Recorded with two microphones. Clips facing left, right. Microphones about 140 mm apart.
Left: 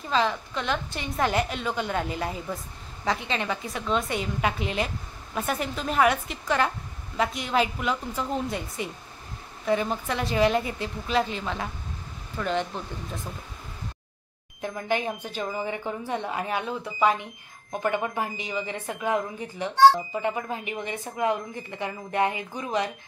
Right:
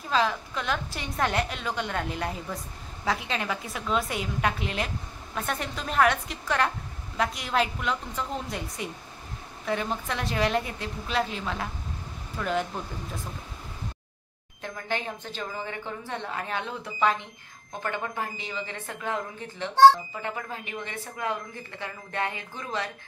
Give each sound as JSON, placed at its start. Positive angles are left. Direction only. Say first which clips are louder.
{"t": 0.1, "sound": "a woman's voice", "louder": "left 1 dB", "side_deg": 0}
{"t": 14.6, "sound": "speech", "louder": "left 5 dB", "side_deg": 15}